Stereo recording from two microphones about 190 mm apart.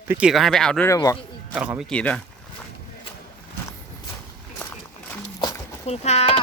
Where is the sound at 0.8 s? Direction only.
15° left (ahead or behind).